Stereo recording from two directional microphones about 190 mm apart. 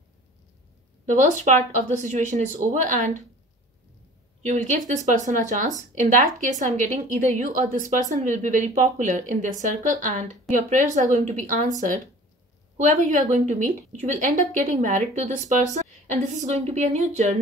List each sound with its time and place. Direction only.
1.0 s speech: 40° right (ahead or behind)
4.4 s speech: 40° right (ahead or behind)
12.7 s speech: 40° right (ahead or behind)